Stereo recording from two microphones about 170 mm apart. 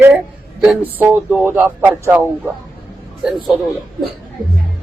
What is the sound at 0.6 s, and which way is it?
Speech, 10° right (ahead or behind).